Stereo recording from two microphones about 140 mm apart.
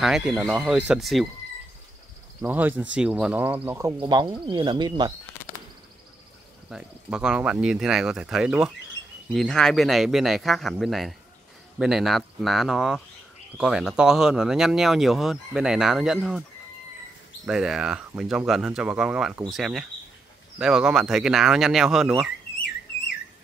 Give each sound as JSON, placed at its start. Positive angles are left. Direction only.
{"t": 0.0, "sound": "speech", "side_deg": -5}
{"t": 2.4, "sound": "speech", "side_deg": -10}
{"t": 4.0, "sound": "speech", "side_deg": -35}
{"t": 6.7, "sound": "speech", "side_deg": -5}
{"t": 17.5, "sound": "speech", "side_deg": -5}